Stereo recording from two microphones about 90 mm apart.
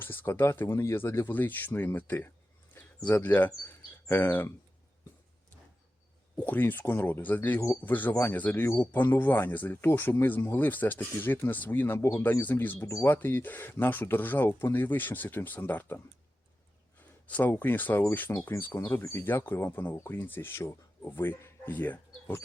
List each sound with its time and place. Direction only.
0.0 s speech: 25° left (ahead or behind)
2.8 s a sound: 25° left (ahead or behind)
3.1 s speech: 20° left (ahead or behind)
6.4 s speech: 20° left (ahead or behind)
17.2 s speech: 15° left (ahead or behind)
18.3 s speech: 30° left (ahead or behind)